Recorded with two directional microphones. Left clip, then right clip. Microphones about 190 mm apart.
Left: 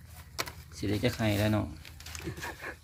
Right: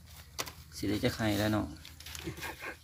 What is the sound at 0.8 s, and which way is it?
Speech, 5° left (ahead or behind).